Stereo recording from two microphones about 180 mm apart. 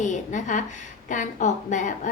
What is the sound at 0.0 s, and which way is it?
A woman's voice, 45° left (ahead or behind).